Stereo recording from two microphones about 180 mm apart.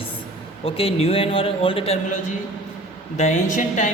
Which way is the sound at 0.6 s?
35° left (ahead or behind).